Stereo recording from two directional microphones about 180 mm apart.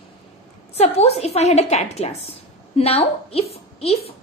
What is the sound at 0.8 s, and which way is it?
A woman's voice, 35° left (ahead or behind).